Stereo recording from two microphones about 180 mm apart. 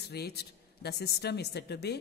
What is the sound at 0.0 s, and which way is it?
Speech, 65° left (ahead or behind).